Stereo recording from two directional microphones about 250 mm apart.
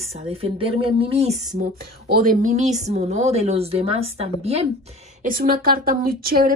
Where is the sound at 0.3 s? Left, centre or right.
Right.